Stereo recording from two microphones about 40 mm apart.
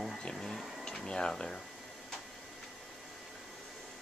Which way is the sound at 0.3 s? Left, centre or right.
Centre.